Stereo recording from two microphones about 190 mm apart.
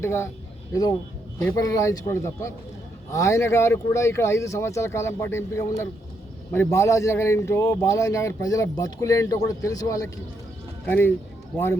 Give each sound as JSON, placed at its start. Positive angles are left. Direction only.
{"t": 0.0, "sound": "a man's voice", "side_deg": 15}